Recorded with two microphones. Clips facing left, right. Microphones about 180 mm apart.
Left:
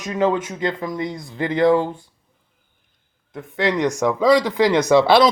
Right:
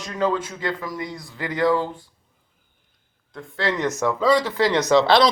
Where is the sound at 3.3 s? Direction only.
15° left (ahead or behind).